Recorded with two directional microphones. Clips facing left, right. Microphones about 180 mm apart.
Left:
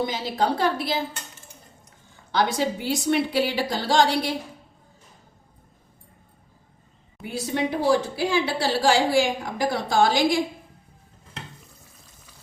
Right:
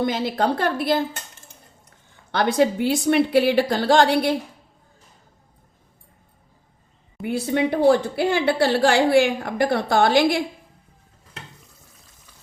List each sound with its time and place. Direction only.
0.0 s a woman's voice: 55° right (ahead or behind)
2.3 s a woman's voice: 60° right (ahead or behind)
7.3 s a woman's voice: 60° right (ahead or behind)